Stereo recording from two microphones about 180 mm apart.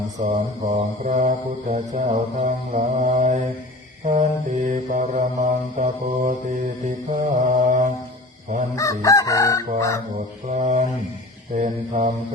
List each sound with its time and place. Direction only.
0.2 s mantra: 45° right (ahead or behind)
8.7 s chicken: 15° left (ahead or behind)
10.4 s mantra: 40° right (ahead or behind)